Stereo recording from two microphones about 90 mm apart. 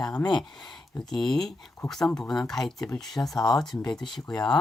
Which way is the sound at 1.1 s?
5° left (ahead or behind).